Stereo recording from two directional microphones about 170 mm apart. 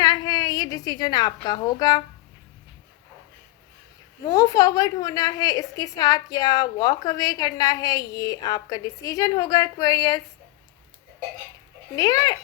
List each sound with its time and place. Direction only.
0.0 s a woman's voice: 20° left (ahead or behind)
4.2 s a woman's voice: 20° left (ahead or behind)
11.9 s a woman's voice: 20° left (ahead or behind)